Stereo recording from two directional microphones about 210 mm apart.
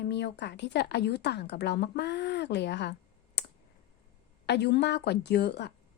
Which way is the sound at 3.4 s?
55° left (ahead or behind).